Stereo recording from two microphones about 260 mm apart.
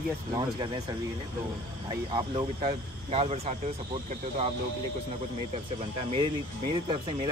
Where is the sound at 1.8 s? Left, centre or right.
Centre.